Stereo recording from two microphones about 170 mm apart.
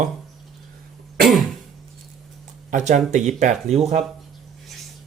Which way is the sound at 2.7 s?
45° right (ahead or behind).